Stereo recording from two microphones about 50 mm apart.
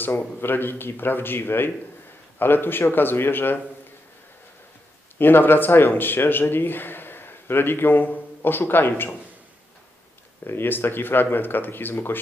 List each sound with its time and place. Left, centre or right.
0.0 s speech: left
5.2 s speech: left
10.4 s speech: left